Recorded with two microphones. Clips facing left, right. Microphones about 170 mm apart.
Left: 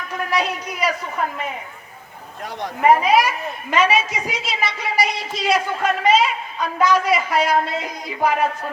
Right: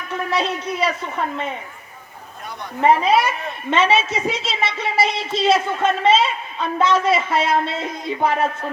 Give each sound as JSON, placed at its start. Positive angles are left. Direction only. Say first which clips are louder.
{"t": 0.1, "sound": "speech", "louder": "right 1 dB", "side_deg": -30}
{"t": 3.0, "sound": "a man's voice", "louder": "even", "side_deg": -30}